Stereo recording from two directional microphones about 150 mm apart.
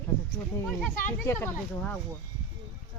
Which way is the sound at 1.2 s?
15° left (ahead or behind).